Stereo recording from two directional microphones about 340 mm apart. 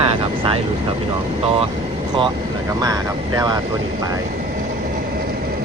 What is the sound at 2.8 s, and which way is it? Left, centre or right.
Speech, centre.